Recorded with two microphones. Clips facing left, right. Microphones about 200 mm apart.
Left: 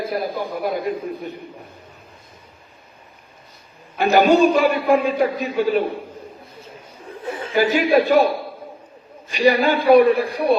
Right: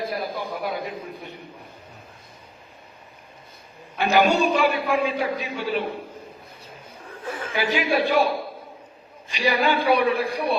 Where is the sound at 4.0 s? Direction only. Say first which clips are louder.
Left 5 dB; 45° left (ahead or behind).